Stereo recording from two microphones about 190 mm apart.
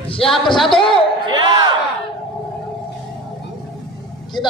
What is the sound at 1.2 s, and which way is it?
Speech, 25° right (ahead or behind).